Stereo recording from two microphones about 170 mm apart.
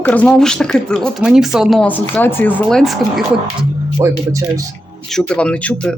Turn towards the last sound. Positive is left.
turn(degrees=5)  # may be behind; listen again after turning